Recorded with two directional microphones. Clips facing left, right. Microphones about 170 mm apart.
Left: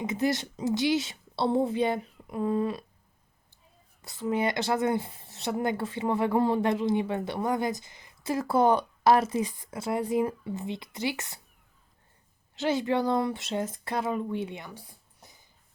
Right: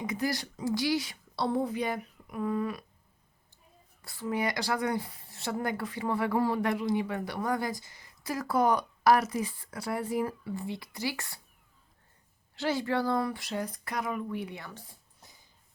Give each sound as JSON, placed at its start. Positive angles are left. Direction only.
{"t": 0.0, "sound": "a woman's voice", "side_deg": 25}
{"t": 4.0, "sound": "speech", "side_deg": 20}
{"t": 12.5, "sound": "speech", "side_deg": 20}